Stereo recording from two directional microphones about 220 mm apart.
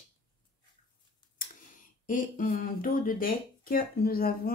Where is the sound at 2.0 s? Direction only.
40° left (ahead or behind).